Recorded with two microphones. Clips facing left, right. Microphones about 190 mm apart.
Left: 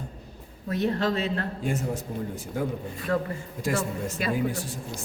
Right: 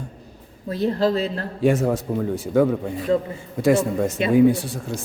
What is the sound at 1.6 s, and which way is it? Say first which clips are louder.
Speech: right 15 dB; 90° right.